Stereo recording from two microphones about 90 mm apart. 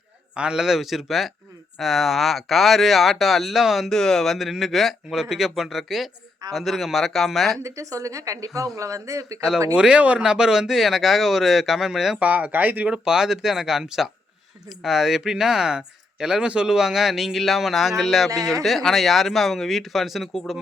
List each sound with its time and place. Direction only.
0.3 s speech: 10° right (ahead or behind)
7.6 s speech: 35° right (ahead or behind)
9.7 s speech: 10° right (ahead or behind)
12.2 s speech: 15° right (ahead or behind); by 20.4 s centre (ahead or behind)